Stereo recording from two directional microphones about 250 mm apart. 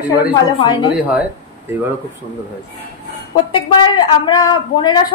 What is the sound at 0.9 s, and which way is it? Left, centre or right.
Speech, centre.